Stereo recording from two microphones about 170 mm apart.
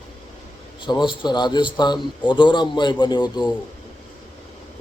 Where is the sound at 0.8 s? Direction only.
25° left (ahead or behind).